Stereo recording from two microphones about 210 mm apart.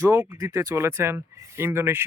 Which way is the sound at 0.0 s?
10° right (ahead or behind).